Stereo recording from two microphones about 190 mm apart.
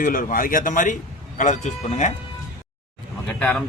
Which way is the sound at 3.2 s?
5° left (ahead or behind).